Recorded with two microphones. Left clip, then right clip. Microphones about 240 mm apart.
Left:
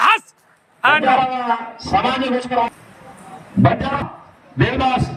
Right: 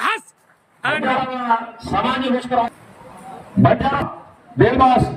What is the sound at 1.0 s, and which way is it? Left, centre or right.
A man's voice, right.